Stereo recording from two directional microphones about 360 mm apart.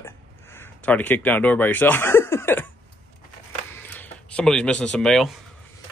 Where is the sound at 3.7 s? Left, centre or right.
Centre.